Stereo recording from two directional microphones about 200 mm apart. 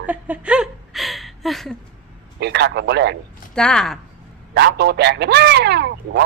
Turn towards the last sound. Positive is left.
turn(degrees=-55)  # may be behind; listen again after turning